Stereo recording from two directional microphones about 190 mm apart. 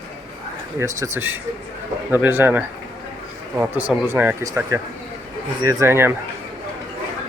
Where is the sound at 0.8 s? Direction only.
15° right (ahead or behind).